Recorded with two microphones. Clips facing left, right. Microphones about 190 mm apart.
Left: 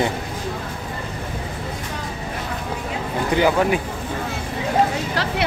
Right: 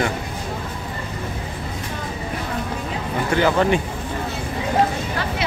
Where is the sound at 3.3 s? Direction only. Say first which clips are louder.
Even; 10° left (ahead or behind).